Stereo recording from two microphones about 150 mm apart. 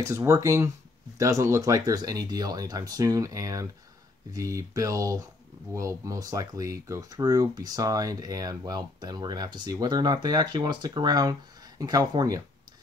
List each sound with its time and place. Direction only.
0.0 s speech: 20° right (ahead or behind)